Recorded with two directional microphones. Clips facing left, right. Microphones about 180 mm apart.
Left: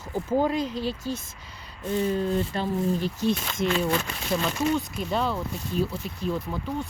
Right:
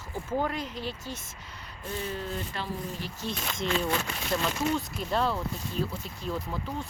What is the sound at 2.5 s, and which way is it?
Speech, 35° left (ahead or behind).